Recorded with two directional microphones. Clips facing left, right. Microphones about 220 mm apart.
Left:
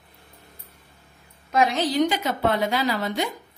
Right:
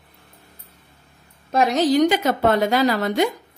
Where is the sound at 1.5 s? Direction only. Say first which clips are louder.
Right 4 dB; 40° right (ahead or behind).